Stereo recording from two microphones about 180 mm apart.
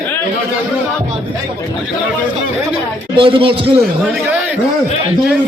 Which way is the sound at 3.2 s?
30° right (ahead or behind).